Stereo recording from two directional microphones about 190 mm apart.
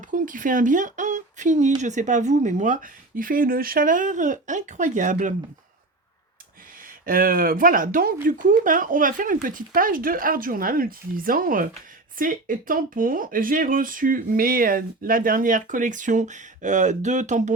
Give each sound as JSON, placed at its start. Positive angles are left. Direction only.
{"t": 0.1, "sound": "speech", "side_deg": -45}
{"t": 7.0, "sound": "speech", "side_deg": -50}